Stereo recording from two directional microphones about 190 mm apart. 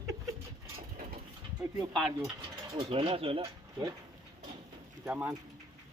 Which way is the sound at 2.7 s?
25° right (ahead or behind).